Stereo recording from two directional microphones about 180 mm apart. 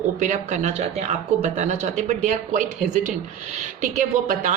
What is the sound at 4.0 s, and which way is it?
Speech, 45° right (ahead or behind).